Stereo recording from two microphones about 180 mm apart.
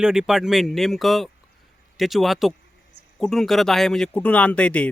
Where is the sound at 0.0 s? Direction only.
5° right (ahead or behind).